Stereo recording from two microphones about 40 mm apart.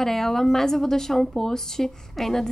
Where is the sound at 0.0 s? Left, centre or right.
Centre.